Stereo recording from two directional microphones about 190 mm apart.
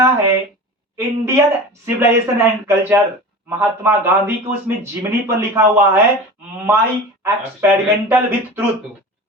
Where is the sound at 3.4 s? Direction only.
10° right (ahead or behind).